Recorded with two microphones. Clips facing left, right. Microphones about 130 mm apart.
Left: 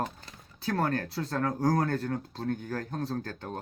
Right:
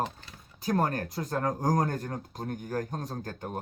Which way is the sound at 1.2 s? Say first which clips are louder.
Left 1 dB; 30° right (ahead or behind).